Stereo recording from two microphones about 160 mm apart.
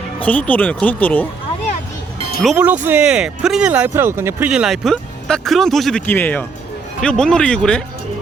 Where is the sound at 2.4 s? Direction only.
5° right (ahead or behind).